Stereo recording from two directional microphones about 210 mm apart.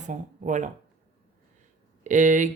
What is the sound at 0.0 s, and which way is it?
Speech, 35° right (ahead or behind).